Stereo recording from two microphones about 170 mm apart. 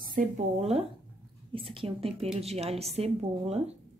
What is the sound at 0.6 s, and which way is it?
Speech, 35° right (ahead or behind).